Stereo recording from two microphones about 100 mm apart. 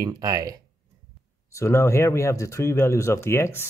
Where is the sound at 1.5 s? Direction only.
30° left (ahead or behind).